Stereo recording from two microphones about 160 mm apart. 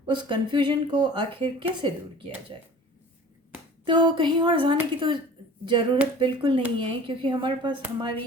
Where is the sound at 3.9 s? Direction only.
30° right (ahead or behind).